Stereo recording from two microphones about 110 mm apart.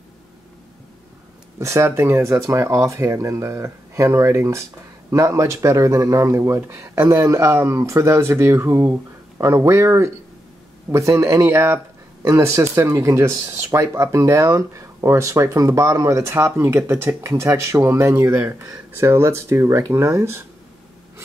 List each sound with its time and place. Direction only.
1.6 s speech: 25° right (ahead or behind)